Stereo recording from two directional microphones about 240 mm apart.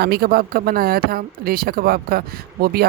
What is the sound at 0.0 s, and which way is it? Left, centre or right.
Speech, right.